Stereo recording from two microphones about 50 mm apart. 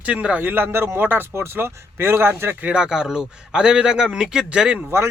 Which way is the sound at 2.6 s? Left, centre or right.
Centre.